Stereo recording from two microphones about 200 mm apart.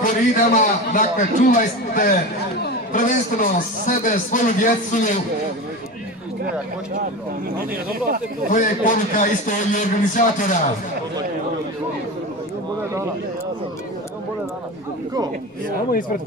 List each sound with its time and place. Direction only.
0.0 s a man's voice: 40° left (ahead or behind)
7.5 s speech: 50° right (ahead or behind)
8.5 s a man's voice: 40° left (ahead or behind)